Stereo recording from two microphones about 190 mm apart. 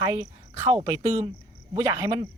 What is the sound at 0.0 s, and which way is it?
Speech, 20° right (ahead or behind).